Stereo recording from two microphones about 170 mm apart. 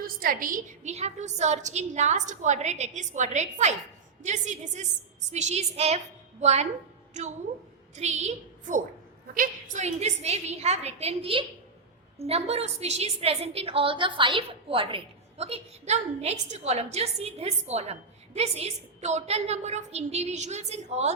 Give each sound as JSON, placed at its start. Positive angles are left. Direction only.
{"t": 0.0, "sound": "a woman's voice", "side_deg": -55}